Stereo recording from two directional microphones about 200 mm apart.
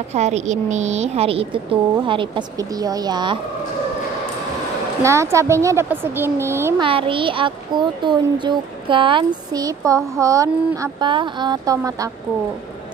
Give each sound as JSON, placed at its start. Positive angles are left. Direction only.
{"t": 0.1, "sound": "speech", "side_deg": -35}
{"t": 5.0, "sound": "speech", "side_deg": -15}
{"t": 6.8, "sound": "speech", "side_deg": -25}